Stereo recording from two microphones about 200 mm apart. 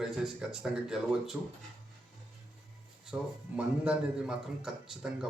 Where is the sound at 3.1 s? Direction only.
10° right (ahead or behind).